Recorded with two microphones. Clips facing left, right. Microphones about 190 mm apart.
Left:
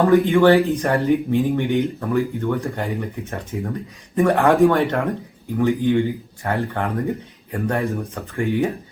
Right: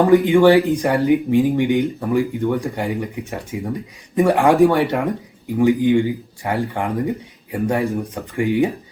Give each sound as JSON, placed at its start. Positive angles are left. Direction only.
{"t": 0.1, "sound": "speech", "side_deg": -10}